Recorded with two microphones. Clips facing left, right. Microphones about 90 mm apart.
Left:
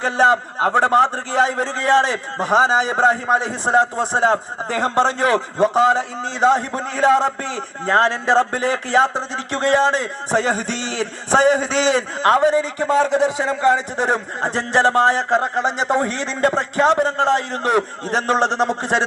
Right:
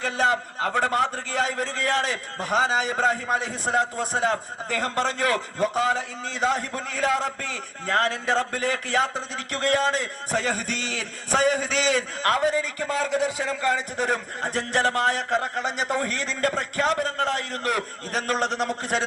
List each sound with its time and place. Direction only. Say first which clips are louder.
0.0 s a man's voice: left 7 dB; 25° left (ahead or behind)